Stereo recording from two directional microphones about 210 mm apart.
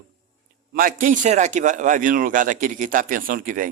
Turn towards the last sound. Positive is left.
turn(degrees=-40)  # may be behind; listen again after turning